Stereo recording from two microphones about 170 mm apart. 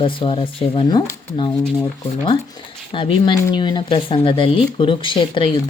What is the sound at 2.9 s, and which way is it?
Speech, 30° left (ahead or behind).